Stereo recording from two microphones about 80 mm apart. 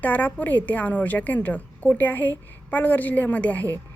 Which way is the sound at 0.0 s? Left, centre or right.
Left.